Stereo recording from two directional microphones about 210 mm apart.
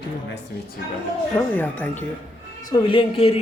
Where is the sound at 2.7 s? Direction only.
25° left (ahead or behind).